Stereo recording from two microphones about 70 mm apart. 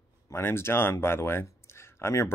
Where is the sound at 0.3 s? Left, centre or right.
Left.